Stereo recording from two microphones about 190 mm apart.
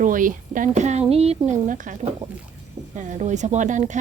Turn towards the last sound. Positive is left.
turn(degrees=-40)  # may be behind; listen again after turning